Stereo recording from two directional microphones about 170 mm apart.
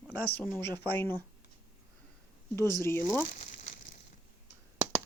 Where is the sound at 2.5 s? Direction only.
15° left (ahead or behind).